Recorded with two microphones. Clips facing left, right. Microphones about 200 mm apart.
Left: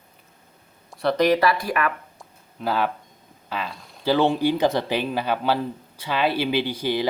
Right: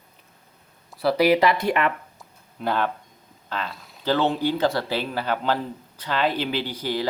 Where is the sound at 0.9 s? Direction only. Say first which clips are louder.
Right 1 dB; 5° right (ahead or behind); by 1.9 s 25° right (ahead or behind).